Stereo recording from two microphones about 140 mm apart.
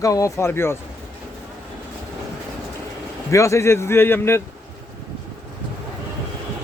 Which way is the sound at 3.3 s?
20° left (ahead or behind).